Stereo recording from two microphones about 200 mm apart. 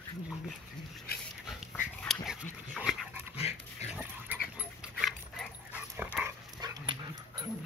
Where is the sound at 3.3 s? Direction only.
30° left (ahead or behind).